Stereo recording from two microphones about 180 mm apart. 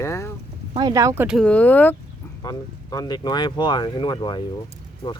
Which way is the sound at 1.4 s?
5° left (ahead or behind).